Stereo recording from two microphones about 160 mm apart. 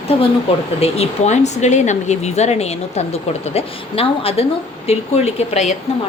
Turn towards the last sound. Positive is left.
turn(degrees=45)  # may be behind; listen again after turning